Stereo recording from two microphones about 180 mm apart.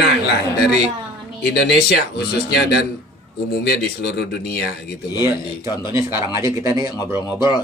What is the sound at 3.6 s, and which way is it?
A man's voice, 65° left (ahead or behind).